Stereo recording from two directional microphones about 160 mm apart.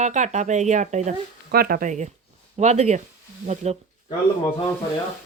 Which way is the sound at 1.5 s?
65° right (ahead or behind).